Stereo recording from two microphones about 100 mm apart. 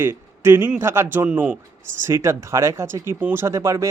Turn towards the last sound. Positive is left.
turn(degrees=-30)  # may be behind; listen again after turning